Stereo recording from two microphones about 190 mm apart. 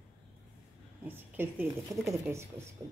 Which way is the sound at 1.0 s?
10° right (ahead or behind).